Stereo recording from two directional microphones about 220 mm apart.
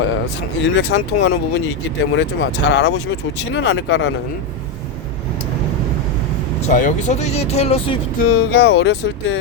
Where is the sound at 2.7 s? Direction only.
50° left (ahead or behind).